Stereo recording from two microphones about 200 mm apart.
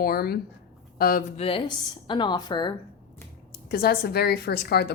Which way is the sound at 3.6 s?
50° left (ahead or behind).